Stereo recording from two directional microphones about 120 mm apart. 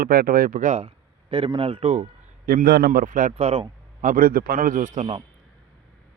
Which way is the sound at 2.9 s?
90° right.